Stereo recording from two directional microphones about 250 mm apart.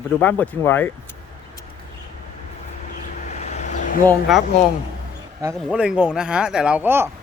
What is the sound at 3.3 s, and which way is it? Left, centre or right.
Vehicle, left.